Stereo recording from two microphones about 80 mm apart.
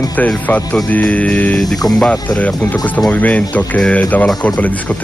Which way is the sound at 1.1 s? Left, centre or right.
Centre.